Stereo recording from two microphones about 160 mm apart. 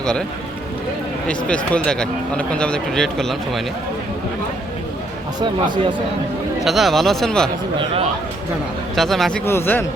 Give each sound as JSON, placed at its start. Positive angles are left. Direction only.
{"t": 0.0, "sound": "speech", "side_deg": 5}
{"t": 1.3, "sound": "speech", "side_deg": 5}
{"t": 5.4, "sound": "speech", "side_deg": -30}
{"t": 6.7, "sound": "speech", "side_deg": 0}
{"t": 9.0, "sound": "speech", "side_deg": 0}
{"t": 9.5, "sound": "speech", "side_deg": 15}